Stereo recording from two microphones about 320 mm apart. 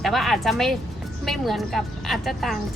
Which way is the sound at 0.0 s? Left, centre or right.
Centre.